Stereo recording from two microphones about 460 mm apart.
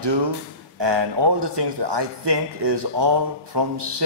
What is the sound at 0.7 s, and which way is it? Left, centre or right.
A man's voice, right.